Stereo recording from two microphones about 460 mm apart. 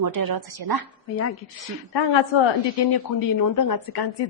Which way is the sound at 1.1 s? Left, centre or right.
Left.